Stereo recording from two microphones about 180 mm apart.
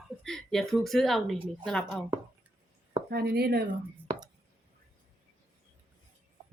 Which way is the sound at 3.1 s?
60° right (ahead or behind).